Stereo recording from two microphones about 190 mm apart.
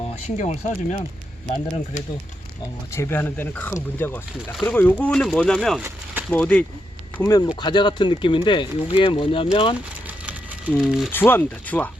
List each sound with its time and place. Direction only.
0.3 s speech: 35° left (ahead or behind)
2.9 s speech: 15° left (ahead or behind)
7.2 s speech: 20° left (ahead or behind)
10.8 s speech: centre (ahead or behind)
11.1 s speech: 10° left (ahead or behind)